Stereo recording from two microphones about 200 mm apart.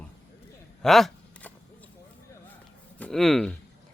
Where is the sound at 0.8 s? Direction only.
Centre (ahead or behind).